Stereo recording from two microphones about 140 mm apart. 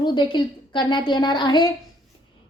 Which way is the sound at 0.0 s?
35° left (ahead or behind).